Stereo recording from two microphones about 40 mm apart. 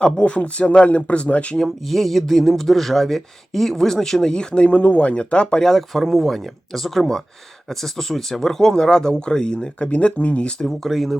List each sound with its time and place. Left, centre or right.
0.0 s speech: left
0.9 s speech: left
1.5 s speech: centre; by 5.5 s left
5.5 s speech: centre; by 10.5 s left
10.7 s speech: centre